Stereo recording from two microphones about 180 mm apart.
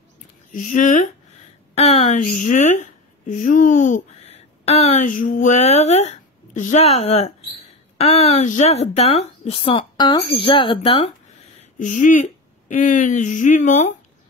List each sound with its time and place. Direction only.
0.5 s a woman's voice: 45° left (ahead or behind); by 11.1 s 30° left (ahead or behind)
11.8 s speech: 45° left (ahead or behind)